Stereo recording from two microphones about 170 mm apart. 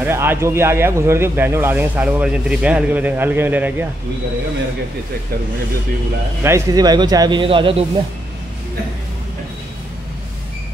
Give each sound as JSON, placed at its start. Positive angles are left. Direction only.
{"t": 0.0, "sound": "speech", "side_deg": -15}
{"t": 6.4, "sound": "a man's voice", "side_deg": -20}